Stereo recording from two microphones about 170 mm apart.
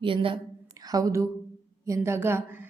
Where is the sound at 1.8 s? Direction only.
15° right (ahead or behind).